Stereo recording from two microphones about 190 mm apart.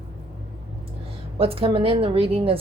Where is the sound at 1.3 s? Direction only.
30° right (ahead or behind).